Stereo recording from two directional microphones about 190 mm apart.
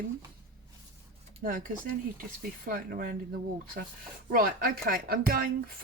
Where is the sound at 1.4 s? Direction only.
45° right (ahead or behind).